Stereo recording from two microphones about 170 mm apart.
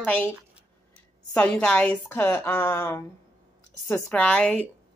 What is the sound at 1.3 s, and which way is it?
Speech, 10° left (ahead or behind).